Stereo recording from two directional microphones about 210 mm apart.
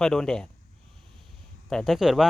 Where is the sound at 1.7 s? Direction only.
Centre (ahead or behind).